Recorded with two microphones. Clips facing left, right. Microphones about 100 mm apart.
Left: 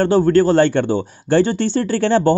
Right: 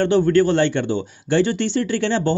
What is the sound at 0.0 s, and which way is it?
Speech, 40° left (ahead or behind).